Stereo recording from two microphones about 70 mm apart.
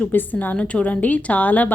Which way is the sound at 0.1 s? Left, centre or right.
Left.